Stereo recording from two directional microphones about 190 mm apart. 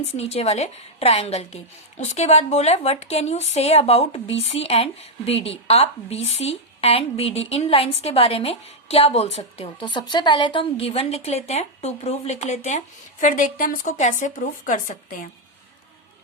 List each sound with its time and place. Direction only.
0.1 s a woman's voice: 35° left (ahead or behind)